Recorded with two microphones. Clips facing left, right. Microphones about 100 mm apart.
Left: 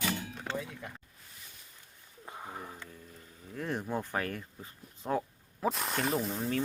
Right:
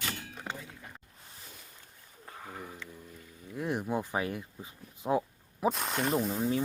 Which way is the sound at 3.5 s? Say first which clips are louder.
Right 2 dB; 15° right (ahead or behind).